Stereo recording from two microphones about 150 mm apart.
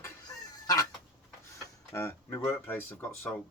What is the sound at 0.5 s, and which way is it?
Duck, 25° left (ahead or behind).